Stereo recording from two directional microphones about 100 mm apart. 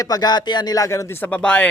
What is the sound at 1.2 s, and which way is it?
Speech, 10° left (ahead or behind).